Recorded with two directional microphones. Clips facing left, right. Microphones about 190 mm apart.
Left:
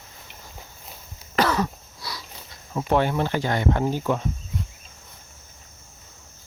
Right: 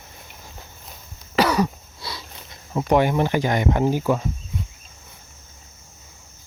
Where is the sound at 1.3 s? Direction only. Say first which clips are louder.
Right 3 dB; 15° right (ahead or behind).